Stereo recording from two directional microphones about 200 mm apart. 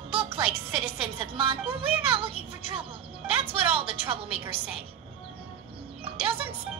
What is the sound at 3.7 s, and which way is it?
Speech, 25° right (ahead or behind).